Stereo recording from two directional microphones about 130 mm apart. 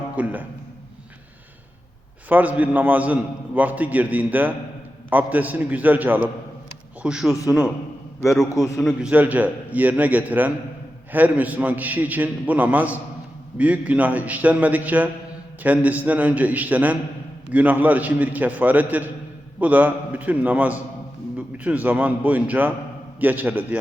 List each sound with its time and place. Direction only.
0.2 s a sound: 10° right (ahead or behind)
2.3 s a man's voice: 10° right (ahead or behind)
8.5 s a man's voice: 20° left (ahead or behind)
8.8 s speech: centre (ahead or behind)
9.0 s a man's voice: 15° right (ahead or behind)